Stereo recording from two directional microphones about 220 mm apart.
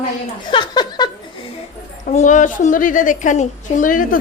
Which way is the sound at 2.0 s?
35° left (ahead or behind).